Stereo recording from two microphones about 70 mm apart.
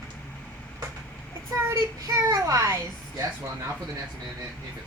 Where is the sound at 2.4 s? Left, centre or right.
Right.